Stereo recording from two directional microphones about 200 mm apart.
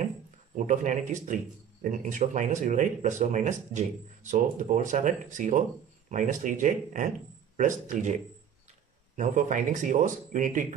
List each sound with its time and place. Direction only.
0.6 s speech: 40° right (ahead or behind)